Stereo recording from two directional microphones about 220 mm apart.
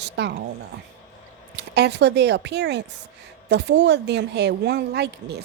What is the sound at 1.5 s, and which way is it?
Speech, 50° right (ahead or behind).